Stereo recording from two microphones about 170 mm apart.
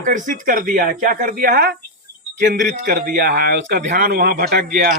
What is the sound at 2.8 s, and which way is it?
Speech, 65° right (ahead or behind).